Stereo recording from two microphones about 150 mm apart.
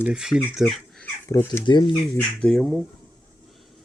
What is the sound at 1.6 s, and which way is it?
Speech, 30° left (ahead or behind).